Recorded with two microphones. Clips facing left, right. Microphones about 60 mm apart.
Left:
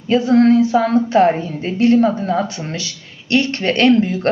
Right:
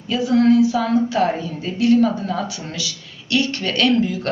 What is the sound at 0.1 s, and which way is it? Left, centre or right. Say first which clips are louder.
A woman's voice: left 3 dB; left.